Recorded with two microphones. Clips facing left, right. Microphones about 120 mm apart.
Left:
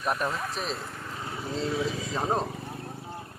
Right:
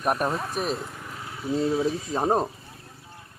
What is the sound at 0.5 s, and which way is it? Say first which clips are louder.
Speech: right 5 dB; 15° right (ahead or behind).